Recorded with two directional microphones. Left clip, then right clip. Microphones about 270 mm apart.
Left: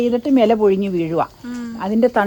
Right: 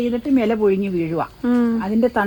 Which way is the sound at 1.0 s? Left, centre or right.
Centre.